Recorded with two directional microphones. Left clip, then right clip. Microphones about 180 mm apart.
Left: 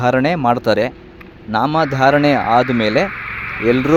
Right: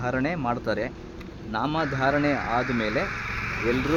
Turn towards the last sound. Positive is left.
turn(degrees=-55)  # may be behind; listen again after turning